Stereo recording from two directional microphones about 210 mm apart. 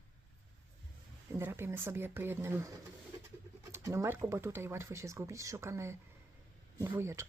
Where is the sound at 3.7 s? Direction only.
15° right (ahead or behind).